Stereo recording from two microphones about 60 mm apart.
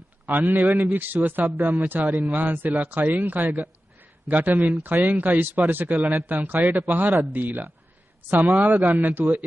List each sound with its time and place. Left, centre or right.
0.5 s a man's voice: right